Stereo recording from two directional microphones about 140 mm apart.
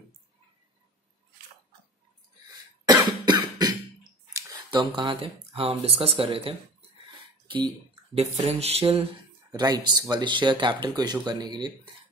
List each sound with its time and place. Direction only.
2.5 s cough: 25° right (ahead or behind)
4.6 s speech: 35° right (ahead or behind)
9.5 s speech: 30° right (ahead or behind)